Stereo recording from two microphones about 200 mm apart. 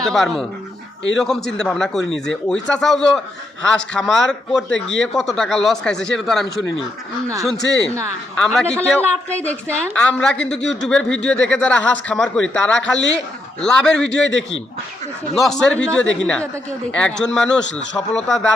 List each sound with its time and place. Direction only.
0.0 s speech: centre (ahead or behind)
7.7 s speech: centre (ahead or behind)
14.3 s speech: 65° left (ahead or behind)
15.4 s speech: centre (ahead or behind)
16.9 s speech: 5° left (ahead or behind)